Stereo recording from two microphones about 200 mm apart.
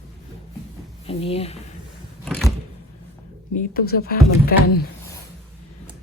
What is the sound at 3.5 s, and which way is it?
Speech, 50° left (ahead or behind).